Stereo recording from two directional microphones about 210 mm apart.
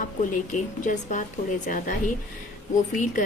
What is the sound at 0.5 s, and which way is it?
Speech, 35° left (ahead or behind).